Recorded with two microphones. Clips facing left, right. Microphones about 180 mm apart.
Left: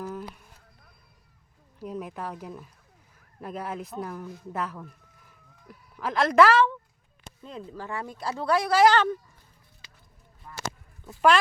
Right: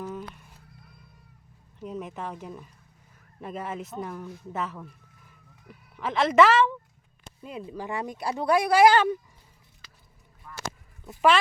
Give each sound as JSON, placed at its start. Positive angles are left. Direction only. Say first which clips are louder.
{"t": 0.0, "sound": "a sound", "louder": "even", "side_deg": 0}
{"t": 1.8, "sound": "speech", "louder": "even", "side_deg": 5}
{"t": 10.5, "sound": "honk", "louder": "left 1 dB", "side_deg": 30}